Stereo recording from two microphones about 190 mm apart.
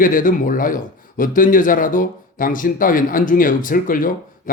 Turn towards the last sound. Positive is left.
turn(degrees=45)  # may be behind; listen again after turning